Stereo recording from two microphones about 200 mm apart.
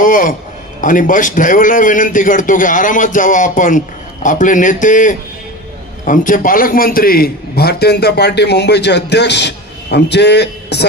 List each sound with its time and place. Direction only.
0.0 s a man's voice: 40° left (ahead or behind)